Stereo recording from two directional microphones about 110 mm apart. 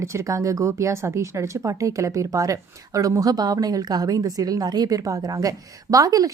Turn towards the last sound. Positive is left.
turn(degrees=-35)  # may be behind; listen again after turning